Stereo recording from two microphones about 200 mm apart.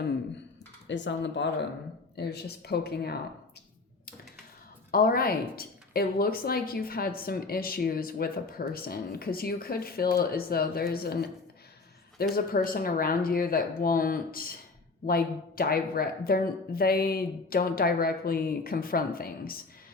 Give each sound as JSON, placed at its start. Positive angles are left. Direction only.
{"t": 0.9, "sound": "speech", "side_deg": 65}
{"t": 4.9, "sound": "speech", "side_deg": 45}
{"t": 12.3, "sound": "speech", "side_deg": 45}